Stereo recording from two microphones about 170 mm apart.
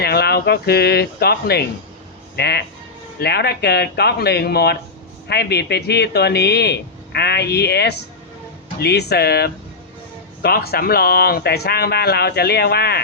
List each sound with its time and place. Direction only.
0.0 s speech: 70° left (ahead or behind)